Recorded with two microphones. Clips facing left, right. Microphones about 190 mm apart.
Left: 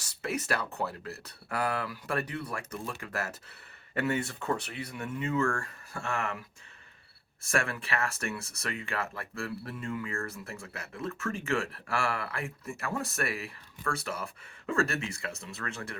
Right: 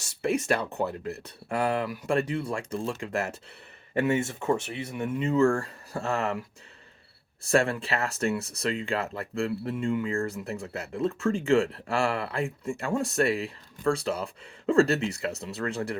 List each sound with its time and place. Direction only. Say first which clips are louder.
0.2 s speech: right 6 dB; 25° right (ahead or behind)
7.5 s speech: right 7 dB; 30° right (ahead or behind)